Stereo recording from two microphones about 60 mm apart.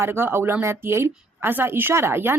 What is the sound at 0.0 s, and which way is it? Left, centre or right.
Speech, right.